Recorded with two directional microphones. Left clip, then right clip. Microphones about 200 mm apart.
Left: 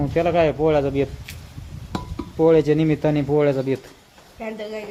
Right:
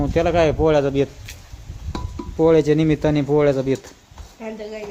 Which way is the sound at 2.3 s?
15° right (ahead or behind).